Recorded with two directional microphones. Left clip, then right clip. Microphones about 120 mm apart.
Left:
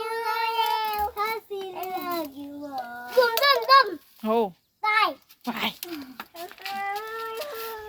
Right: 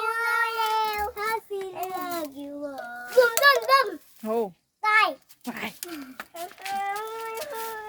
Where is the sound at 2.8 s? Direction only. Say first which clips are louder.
Even; 30° right (ahead or behind).